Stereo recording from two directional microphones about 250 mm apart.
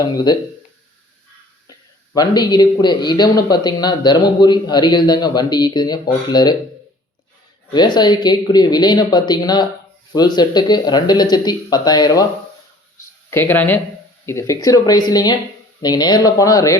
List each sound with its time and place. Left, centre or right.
0.0 s a man's voice: centre
2.1 s a man's voice: centre
7.7 s a man's voice: centre
13.3 s a man's voice: centre